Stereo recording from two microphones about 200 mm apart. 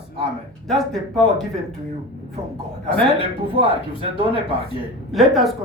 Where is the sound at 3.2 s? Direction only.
25° left (ahead or behind).